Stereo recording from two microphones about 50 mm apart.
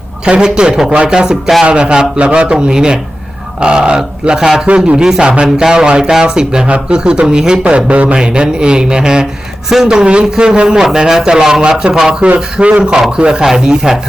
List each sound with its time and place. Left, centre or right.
0.3 s a man's voice: centre
5.0 s speech: centre
12.2 s a man's voice: right